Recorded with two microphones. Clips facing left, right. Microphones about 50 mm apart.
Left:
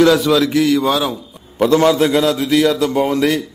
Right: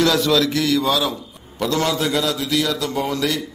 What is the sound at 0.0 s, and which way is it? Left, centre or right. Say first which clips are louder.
A man's voice: left 5 dB; centre.